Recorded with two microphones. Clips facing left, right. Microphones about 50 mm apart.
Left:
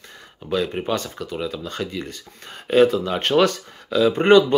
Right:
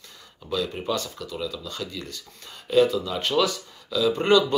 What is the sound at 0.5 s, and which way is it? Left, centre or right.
Speech, left.